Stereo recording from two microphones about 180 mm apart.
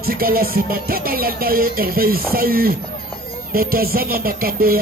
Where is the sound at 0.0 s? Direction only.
55° right (ahead or behind).